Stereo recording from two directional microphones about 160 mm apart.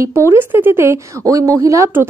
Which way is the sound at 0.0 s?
15° right (ahead or behind).